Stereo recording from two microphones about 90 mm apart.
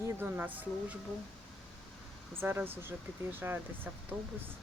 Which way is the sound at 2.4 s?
25° right (ahead or behind).